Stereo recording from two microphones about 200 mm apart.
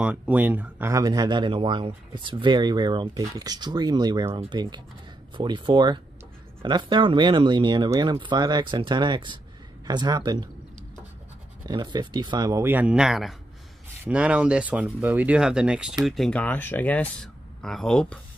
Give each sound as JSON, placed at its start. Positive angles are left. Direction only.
{"t": 0.0, "sound": "speech", "side_deg": -10}
{"t": 11.6, "sound": "speech", "side_deg": -20}